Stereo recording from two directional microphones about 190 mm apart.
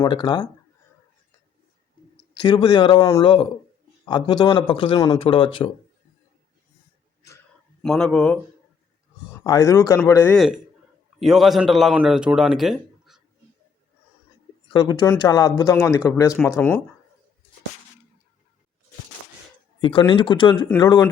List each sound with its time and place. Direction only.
0.0 s speech: 20° left (ahead or behind)
2.4 s speech: 25° left (ahead or behind)
7.8 s speech: 5° left (ahead or behind)
9.4 s speech: 20° left (ahead or behind)
11.2 s speech: centre (ahead or behind)
14.7 s speech: 20° left (ahead or behind)
19.8 s speech: 25° left (ahead or behind)